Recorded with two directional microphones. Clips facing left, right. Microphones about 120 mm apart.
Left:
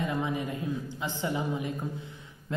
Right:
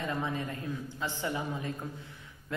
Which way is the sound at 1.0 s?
20° left (ahead or behind).